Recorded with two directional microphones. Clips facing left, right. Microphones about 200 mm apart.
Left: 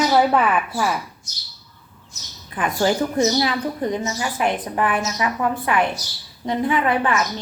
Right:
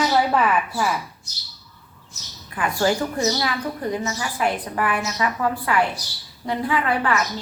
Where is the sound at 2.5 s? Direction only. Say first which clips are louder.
Left 1 dB; 20° left (ahead or behind).